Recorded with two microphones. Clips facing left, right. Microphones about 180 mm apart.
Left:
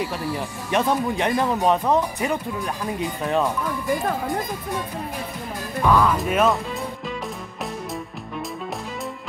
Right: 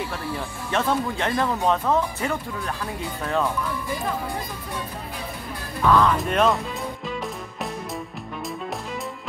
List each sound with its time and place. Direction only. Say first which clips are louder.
0.7 s speech: left 2 dB; 15° left (ahead or behind)
5.8 s speech: even; 10° left (ahead or behind)